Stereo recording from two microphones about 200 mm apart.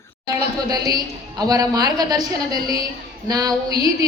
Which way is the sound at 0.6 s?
20° right (ahead or behind).